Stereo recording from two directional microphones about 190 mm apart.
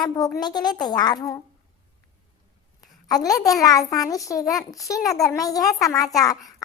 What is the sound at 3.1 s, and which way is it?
A woman's voice, 20° left (ahead or behind).